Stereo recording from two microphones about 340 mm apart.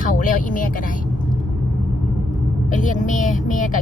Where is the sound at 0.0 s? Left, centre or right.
Left.